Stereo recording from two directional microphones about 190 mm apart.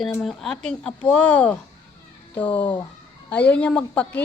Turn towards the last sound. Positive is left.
turn(degrees=5)  # may be behind; listen again after turning